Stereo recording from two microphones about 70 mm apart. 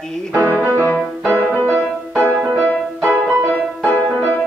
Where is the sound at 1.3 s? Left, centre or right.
Right.